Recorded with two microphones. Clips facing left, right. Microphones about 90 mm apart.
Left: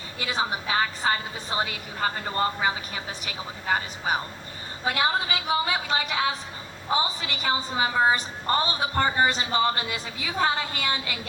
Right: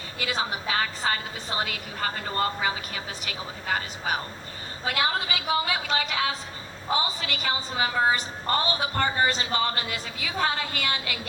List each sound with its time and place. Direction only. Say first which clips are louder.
0.2 s a woman's voice: left 1 dB; 25° left (ahead or behind)